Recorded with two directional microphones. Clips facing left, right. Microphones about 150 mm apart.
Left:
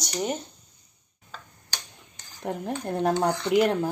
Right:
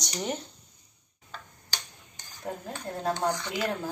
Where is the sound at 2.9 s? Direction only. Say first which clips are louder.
Left 4 dB; 70° left (ahead or behind).